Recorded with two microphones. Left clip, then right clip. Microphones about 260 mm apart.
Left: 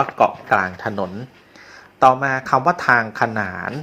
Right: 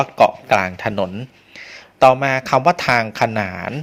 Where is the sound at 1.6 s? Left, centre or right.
Right.